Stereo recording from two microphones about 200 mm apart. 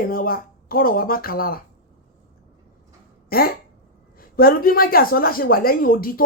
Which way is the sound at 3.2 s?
50° left (ahead or behind).